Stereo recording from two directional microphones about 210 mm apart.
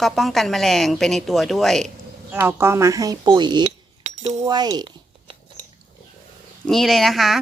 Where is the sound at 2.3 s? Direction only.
10° right (ahead or behind).